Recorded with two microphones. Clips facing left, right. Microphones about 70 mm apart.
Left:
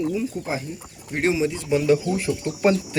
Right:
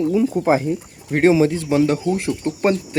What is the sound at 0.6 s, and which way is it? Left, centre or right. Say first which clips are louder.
Speech: right 12 dB; right.